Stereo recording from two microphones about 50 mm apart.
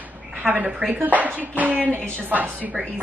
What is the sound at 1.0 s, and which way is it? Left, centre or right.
A woman's voice, right.